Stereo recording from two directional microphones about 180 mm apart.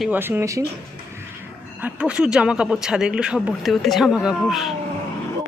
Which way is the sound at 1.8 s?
5° right (ahead or behind).